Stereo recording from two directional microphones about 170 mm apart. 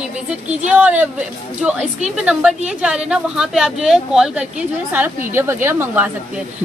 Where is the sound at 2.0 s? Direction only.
5° right (ahead or behind).